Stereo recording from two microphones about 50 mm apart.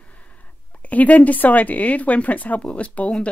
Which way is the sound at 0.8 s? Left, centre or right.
Left.